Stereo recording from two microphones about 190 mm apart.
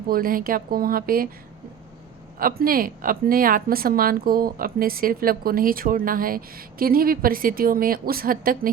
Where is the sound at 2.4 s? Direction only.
50° right (ahead or behind).